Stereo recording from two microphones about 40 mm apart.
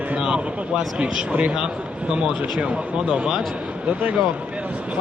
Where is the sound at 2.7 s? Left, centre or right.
Right.